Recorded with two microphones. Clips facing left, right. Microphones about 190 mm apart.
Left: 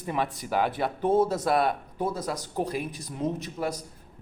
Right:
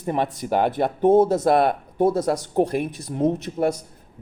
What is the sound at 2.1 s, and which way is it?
Speech, 60° right (ahead or behind).